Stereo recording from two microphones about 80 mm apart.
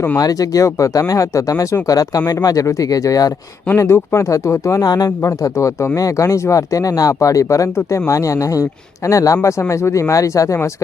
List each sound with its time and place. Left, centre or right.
0.2 s speech: left
3.8 s speech: left
4.9 s speech: left